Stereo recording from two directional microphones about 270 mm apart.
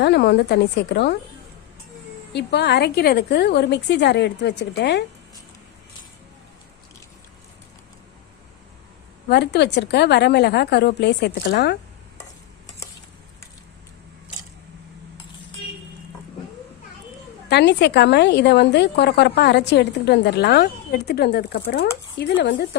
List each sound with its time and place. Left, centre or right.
0.0 s a woman's voice: left
2.3 s a woman's voice: left
9.3 s a woman's voice: left
17.5 s a woman's voice: left